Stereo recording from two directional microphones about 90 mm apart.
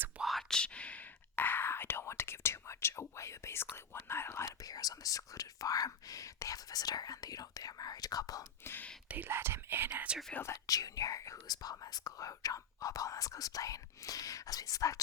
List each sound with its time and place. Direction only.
0.2 s whispering: centre (ahead or behind); by 8.4 s 45° left (ahead or behind)
8.6 s whispering: 25° left (ahead or behind)
9.0 s whispering: 20° right (ahead or behind)
10.5 s speech: 40° left (ahead or behind)